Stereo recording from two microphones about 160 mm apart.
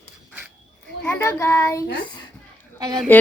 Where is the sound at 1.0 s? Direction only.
10° left (ahead or behind).